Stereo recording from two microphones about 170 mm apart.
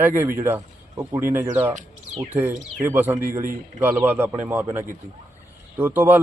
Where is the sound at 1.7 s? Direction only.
45° right (ahead or behind).